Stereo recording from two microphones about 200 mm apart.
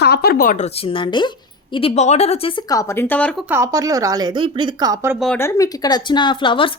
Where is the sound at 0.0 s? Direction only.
55° left (ahead or behind); by 3.4 s 5° left (ahead or behind).